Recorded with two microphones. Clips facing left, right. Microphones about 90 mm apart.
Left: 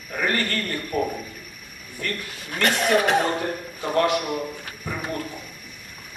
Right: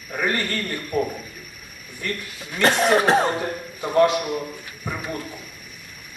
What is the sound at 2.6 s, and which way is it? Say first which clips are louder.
Speech: right 3 dB; 25° right (ahead or behind).